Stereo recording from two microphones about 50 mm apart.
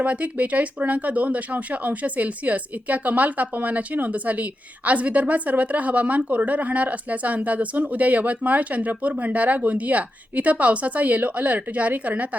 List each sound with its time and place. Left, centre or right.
0.0 s speech: right